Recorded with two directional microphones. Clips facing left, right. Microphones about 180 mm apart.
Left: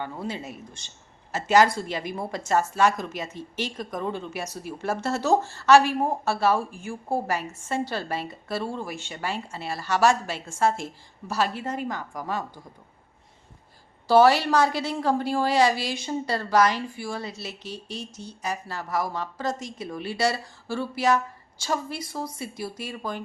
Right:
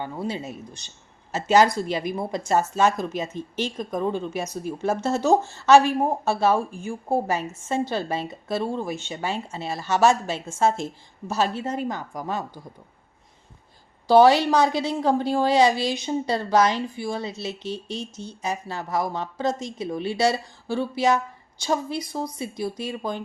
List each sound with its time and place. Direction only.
0.0 s a woman's voice: 20° right (ahead or behind)
14.1 s a woman's voice: 20° right (ahead or behind)